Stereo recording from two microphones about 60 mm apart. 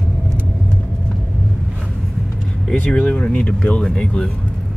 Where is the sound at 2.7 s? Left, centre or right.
Left.